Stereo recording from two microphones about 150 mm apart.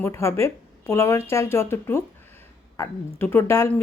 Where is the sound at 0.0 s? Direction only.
20° left (ahead or behind).